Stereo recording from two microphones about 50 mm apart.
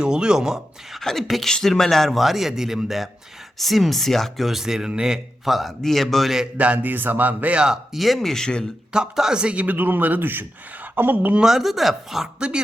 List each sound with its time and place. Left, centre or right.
0.0 s speech: centre
0.9 s a man's voice: centre
5.5 s a man's voice: centre
6.6 s speech: right
6.9 s a man's voice: right
7.5 s speech: centre
7.9 s speech: centre
8.9 s speech: centre
9.6 s a man's voice: right
11.4 s a man's voice: centre